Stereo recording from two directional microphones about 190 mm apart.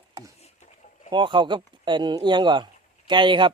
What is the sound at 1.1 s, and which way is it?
Speech, 25° right (ahead or behind).